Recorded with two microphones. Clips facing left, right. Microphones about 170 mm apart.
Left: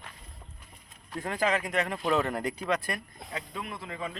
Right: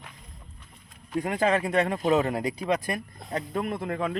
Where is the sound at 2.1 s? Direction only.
20° right (ahead or behind).